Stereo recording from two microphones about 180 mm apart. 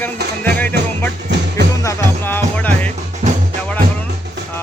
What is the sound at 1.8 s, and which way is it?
Music, 15° left (ahead or behind).